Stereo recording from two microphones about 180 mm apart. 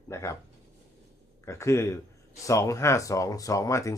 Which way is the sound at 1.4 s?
15° left (ahead or behind).